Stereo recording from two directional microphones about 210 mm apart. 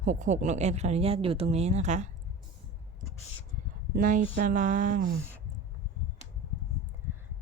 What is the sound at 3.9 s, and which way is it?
Speech, 40° right (ahead or behind).